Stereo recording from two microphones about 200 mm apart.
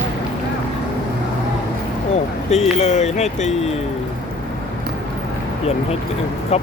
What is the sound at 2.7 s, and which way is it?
Speech, 35° left (ahead or behind).